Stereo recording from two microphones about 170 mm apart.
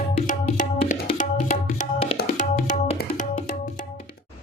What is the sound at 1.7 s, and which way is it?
Music, 40° left (ahead or behind).